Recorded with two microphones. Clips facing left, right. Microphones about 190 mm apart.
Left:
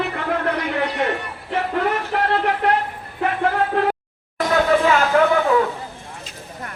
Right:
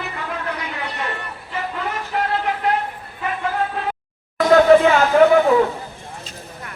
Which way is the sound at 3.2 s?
60° left (ahead or behind).